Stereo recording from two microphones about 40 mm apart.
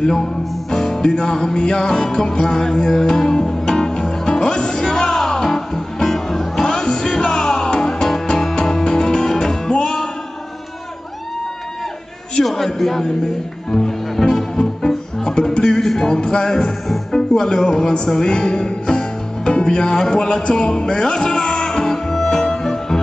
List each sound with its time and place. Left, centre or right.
0.0 s music: centre
12.4 s a man's voice: centre
13.7 s music: centre
16.0 s speech: centre
22.1 s music: centre